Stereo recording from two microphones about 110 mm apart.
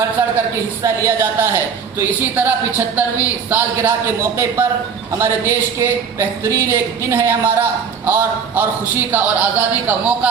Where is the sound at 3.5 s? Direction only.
25° right (ahead or behind).